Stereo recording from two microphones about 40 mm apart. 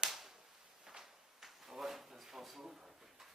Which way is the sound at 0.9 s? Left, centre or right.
Centre.